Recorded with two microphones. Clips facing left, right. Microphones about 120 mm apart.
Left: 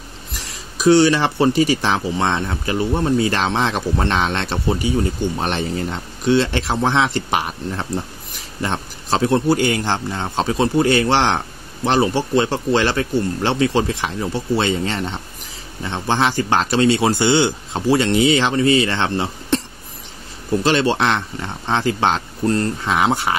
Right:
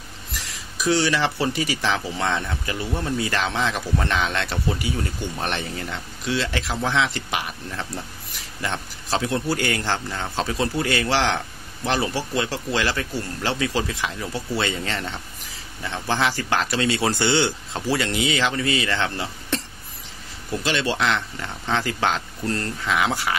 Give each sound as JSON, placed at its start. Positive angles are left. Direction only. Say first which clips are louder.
{"t": 0.5, "sound": "a sound", "louder": "left 9 dB", "side_deg": 30}
{"t": 1.4, "sound": "speech", "louder": "left 8 dB", "side_deg": 30}
{"t": 17.2, "sound": "speech", "louder": "left 5 dB", "side_deg": 20}
{"t": 18.0, "sound": "speech", "louder": "left 7 dB", "side_deg": 30}
{"t": 20.6, "sound": "speech", "louder": "left 5 dB", "side_deg": 30}